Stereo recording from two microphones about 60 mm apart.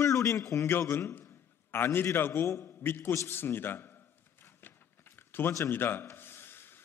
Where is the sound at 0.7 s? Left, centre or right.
Left.